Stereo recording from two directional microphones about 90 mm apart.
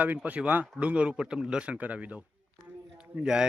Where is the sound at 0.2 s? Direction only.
15° right (ahead or behind).